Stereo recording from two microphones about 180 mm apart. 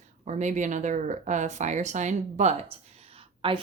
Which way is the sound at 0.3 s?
40° right (ahead or behind).